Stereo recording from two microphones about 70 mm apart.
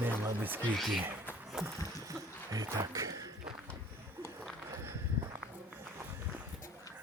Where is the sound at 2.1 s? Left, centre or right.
Right.